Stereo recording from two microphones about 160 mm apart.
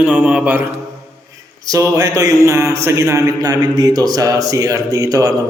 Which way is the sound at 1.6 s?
20° right (ahead or behind).